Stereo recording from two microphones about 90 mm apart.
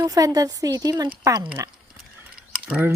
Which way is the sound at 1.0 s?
45° right (ahead or behind).